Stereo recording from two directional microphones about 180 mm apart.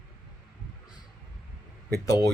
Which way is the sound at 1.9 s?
20° left (ahead or behind).